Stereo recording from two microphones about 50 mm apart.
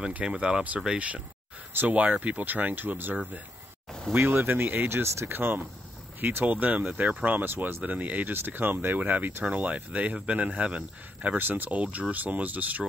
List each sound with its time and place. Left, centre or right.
0.2 s speech: right
0.9 s speech: right
1.7 s speech: right
4.2 s speech: right
4.8 s speech: right
5.3 s speech: right
7.5 s speech: right
7.8 s speech: right
8.3 s speech: right
11.2 s speech: right
11.7 s speech: right